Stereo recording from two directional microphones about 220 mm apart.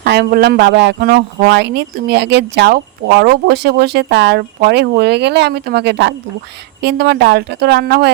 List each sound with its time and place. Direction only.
0.0 s speech: 45° right (ahead or behind)